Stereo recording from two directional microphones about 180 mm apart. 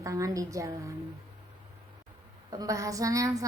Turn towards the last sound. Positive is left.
turn(degrees=-20)  # may be behind; listen again after turning